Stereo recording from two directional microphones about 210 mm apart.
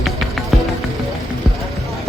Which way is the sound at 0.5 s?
Centre (ahead or behind).